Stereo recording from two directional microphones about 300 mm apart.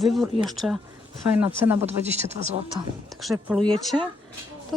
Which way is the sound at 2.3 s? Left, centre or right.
Right.